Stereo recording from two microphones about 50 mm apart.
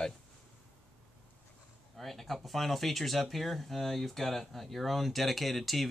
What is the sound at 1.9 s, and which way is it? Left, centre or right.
Speech, centre.